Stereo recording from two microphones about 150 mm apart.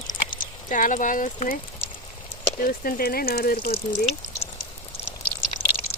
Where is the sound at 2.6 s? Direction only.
70° left (ahead or behind); by 3.8 s 90° left.